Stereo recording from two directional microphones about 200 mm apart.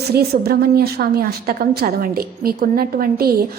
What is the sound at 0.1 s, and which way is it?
A woman's voice, 50° right (ahead or behind).